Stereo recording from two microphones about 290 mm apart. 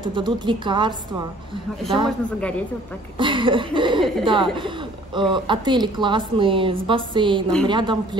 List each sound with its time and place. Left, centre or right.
0.0 s speech: centre
2.0 s speech: centre
3.2 s speech: centre